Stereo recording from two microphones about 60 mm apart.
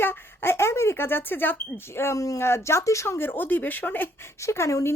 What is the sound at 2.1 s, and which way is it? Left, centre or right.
Speech, left.